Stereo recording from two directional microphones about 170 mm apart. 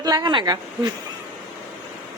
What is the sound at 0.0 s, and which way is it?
Speech, 25° right (ahead or behind).